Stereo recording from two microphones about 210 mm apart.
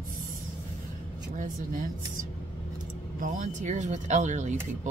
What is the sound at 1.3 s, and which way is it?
Speech, 40° right (ahead or behind).